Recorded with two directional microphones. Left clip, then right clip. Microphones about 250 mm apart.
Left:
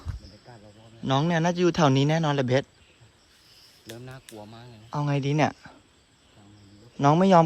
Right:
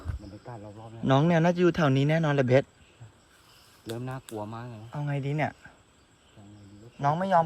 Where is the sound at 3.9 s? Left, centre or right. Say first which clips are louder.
Right 7 dB; right.